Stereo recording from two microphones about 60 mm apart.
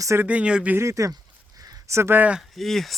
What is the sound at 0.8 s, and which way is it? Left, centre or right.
Speech, right.